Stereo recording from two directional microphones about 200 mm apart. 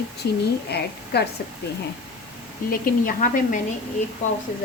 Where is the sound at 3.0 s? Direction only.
40° left (ahead or behind).